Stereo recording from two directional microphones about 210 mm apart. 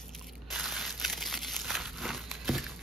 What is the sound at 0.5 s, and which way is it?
Crumpling, centre (ahead or behind).